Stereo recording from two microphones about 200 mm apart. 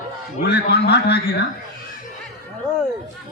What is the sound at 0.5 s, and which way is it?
Speech, 55° left (ahead or behind).